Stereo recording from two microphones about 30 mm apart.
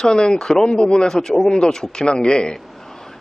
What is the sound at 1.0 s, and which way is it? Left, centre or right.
Speech, centre.